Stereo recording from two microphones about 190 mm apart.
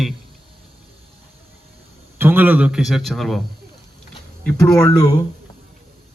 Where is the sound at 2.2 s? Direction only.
10° right (ahead or behind).